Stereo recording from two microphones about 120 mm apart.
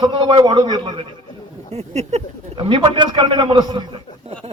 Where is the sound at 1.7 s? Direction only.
65° right (ahead or behind).